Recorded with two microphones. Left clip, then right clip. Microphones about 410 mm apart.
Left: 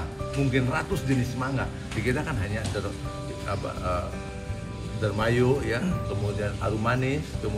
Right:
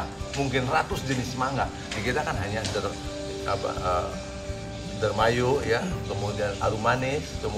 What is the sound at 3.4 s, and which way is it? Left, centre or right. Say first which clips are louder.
Speech: right 4 dB; centre.